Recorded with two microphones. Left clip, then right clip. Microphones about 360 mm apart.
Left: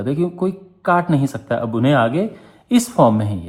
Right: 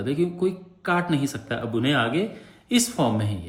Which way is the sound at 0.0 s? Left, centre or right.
Centre.